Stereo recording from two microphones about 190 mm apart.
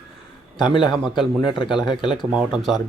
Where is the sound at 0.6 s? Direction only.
25° left (ahead or behind).